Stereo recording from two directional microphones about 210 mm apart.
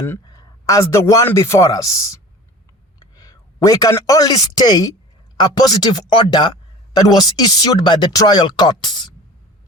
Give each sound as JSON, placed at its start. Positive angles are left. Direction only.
{"t": 0.0, "sound": "a man's voice", "side_deg": 15}